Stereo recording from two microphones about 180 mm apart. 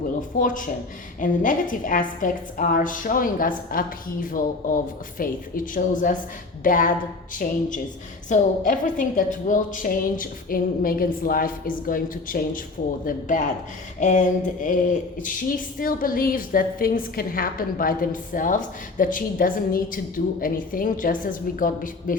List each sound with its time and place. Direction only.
0.2 s speech: 50° left (ahead or behind)